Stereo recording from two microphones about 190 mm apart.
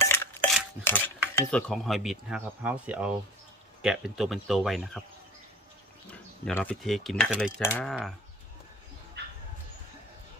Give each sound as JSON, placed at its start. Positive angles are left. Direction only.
{"t": 0.0, "sound": "a sound", "side_deg": 10}
{"t": 0.8, "sound": "speech", "side_deg": 10}
{"t": 6.5, "sound": "speech", "side_deg": 5}
{"t": 7.6, "sound": "speech", "side_deg": 10}
{"t": 9.2, "sound": "dog", "side_deg": -65}